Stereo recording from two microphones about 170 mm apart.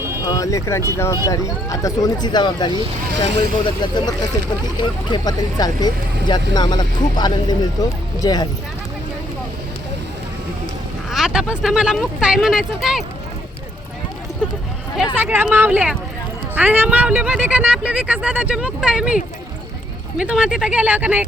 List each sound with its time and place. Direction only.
0.3 s speech: 20° left (ahead or behind)
3.9 s speech: 20° left (ahead or behind)
11.1 s speech: 5° right (ahead or behind)
14.9 s speech: 10° right (ahead or behind)